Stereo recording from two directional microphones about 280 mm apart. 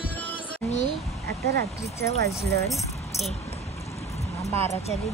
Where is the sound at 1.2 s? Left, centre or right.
Right.